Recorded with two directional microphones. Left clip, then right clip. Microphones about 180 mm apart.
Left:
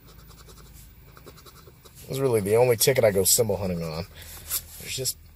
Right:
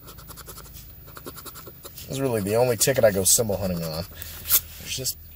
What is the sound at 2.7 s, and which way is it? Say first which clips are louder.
Speech: left 1 dB; 20° left (ahead or behind).